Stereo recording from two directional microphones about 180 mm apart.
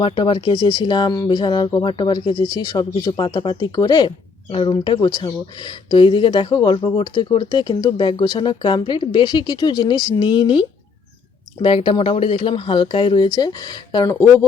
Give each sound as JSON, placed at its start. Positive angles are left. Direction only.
{"t": 0.0, "sound": "speech", "side_deg": 30}